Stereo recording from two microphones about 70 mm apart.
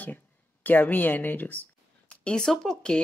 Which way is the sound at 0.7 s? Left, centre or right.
Left.